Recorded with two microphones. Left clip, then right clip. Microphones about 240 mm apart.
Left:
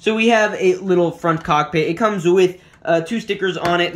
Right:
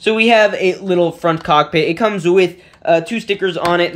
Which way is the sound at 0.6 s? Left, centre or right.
Centre.